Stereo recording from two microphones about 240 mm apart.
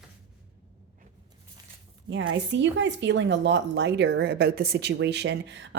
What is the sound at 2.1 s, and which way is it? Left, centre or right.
A woman's voice, right.